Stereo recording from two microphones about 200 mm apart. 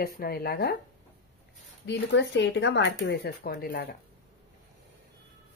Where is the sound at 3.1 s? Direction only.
50° left (ahead or behind).